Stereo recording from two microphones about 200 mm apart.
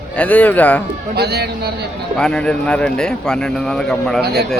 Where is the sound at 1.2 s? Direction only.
55° right (ahead or behind).